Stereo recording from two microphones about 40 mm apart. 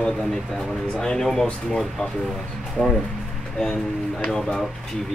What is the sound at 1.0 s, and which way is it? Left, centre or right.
Speech, centre.